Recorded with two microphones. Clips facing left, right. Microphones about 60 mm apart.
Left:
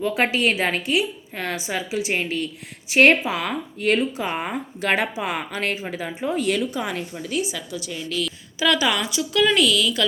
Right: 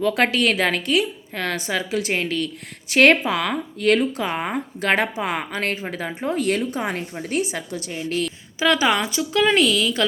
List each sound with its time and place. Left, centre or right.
0.0 s a woman's voice: right